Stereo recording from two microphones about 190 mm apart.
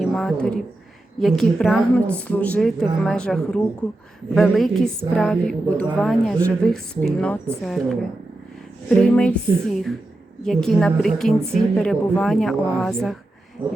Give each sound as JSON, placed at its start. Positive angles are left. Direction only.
{"t": 0.0, "sound": "a woman's voice", "side_deg": 0}
{"t": 9.0, "sound": "a woman's voice", "side_deg": 5}
{"t": 13.6, "sound": "a sound", "side_deg": -10}